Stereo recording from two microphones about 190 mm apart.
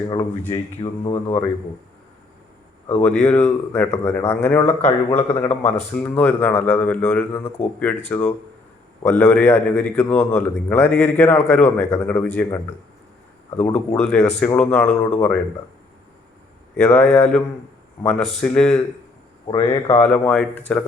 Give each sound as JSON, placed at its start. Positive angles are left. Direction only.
{"t": 0.5, "sound": "speech", "side_deg": 30}
{"t": 2.9, "sound": "a man's voice", "side_deg": 5}
{"t": 13.6, "sound": "a man's voice", "side_deg": 5}
{"t": 16.7, "sound": "speech", "side_deg": 5}
{"t": 20.0, "sound": "speech", "side_deg": 5}